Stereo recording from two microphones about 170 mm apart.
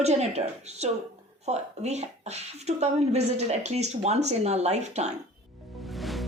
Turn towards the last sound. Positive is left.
turn(degrees=0)  # may be behind; listen again after turning